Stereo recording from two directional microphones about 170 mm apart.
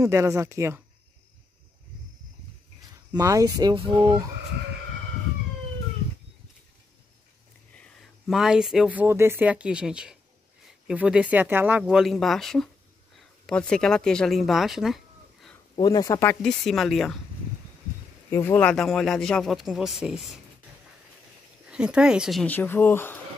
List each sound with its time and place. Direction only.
0.0 s speech: 20° right (ahead or behind)
3.1 s speech: 20° right (ahead or behind)
7.7 s speech: centre (ahead or behind)
11.8 s speech: centre (ahead or behind)
15.7 s speech: 25° left (ahead or behind)
16.4 s speech: centre (ahead or behind)
18.3 s speech: 10° left (ahead or behind)
21.6 s speech: 5° right (ahead or behind)
22.5 s speech: 10° left (ahead or behind)